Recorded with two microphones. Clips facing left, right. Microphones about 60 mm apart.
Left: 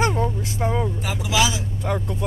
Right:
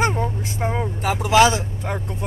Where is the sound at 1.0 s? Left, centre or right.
Right.